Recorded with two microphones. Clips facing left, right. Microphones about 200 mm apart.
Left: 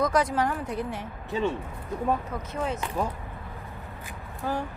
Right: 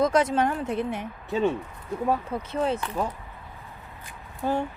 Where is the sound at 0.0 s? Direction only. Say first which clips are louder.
Right 3 dB; 25° right (ahead or behind).